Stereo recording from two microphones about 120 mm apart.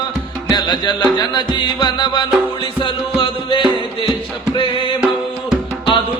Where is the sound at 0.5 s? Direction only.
40° left (ahead or behind).